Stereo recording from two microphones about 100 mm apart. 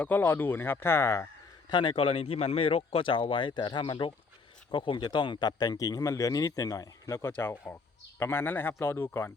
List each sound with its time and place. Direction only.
0.0 s speech: 20° left (ahead or behind)
1.7 s speech: 55° left (ahead or behind); by 9.3 s 20° left (ahead or behind)